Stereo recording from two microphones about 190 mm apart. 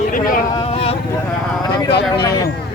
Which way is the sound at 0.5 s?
30° left (ahead or behind).